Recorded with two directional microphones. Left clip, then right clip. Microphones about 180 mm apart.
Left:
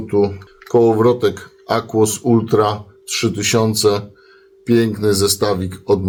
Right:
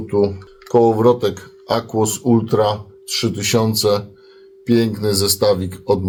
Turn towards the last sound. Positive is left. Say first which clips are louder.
# right 1 dB
turn(degrees=15)  # may be behind; listen again after turning